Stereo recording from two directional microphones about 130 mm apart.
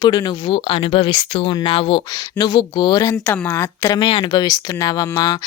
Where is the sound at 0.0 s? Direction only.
35° left (ahead or behind).